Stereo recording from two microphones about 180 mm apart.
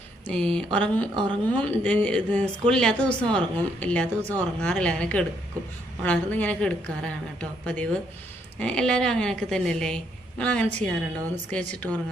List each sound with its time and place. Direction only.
0.3 s a woman's voice: 5° left (ahead or behind)
1.1 s a woman's voice: 25° right (ahead or behind)
1.6 s a woman's voice: 5° left (ahead or behind)